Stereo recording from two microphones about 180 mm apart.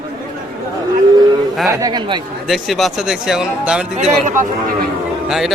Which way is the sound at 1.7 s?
20° right (ahead or behind).